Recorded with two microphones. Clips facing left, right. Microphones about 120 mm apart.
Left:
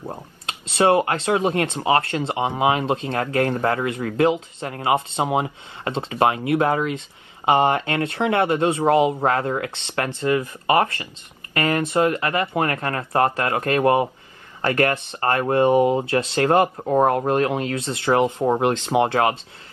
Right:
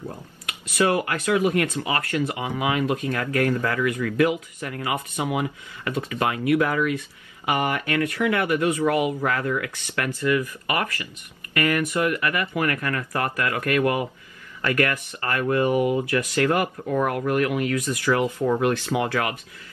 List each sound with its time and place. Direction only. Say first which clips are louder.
0.5 s speech: left 4 dB; 25° left (ahead or behind)
16.7 s speech: left 6 dB; 40° left (ahead or behind); by 19.3 s 25° left (ahead or behind)